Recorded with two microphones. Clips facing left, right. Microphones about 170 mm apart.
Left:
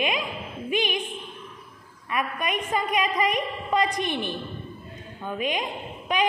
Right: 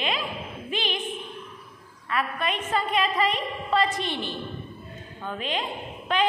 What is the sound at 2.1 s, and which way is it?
A woman's voice, 15° left (ahead or behind).